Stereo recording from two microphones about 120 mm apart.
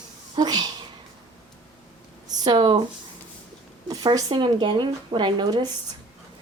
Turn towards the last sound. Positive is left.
turn(degrees=-40)  # may be behind; listen again after turning